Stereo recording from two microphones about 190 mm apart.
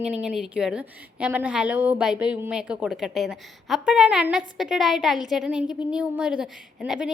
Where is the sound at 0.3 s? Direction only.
5° right (ahead or behind).